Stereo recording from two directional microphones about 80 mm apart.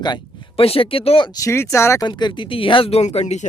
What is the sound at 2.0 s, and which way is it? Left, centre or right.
Speech, left.